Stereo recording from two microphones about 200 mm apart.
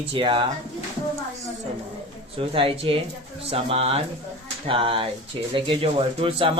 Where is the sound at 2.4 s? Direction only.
25° right (ahead or behind).